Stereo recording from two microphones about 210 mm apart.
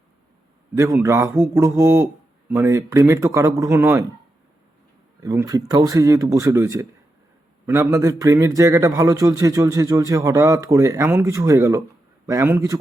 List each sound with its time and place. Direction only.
0.8 s a man's voice: 15° right (ahead or behind)
5.2 s a man's voice: 15° right (ahead or behind)